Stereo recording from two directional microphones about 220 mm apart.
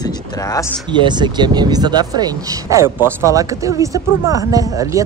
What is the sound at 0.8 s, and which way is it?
Speech, 20° right (ahead or behind).